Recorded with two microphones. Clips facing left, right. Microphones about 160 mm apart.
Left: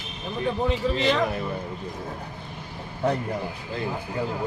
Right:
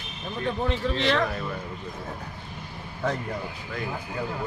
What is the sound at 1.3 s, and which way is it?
Speech, 20° left (ahead or behind).